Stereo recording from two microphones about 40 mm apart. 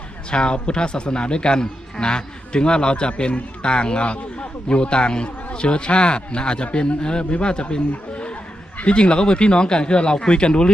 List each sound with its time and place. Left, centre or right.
0.3 s speech: left
8.8 s speech: left